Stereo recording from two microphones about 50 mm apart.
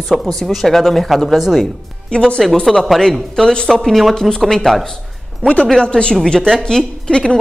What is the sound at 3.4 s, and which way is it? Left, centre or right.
Speech, centre.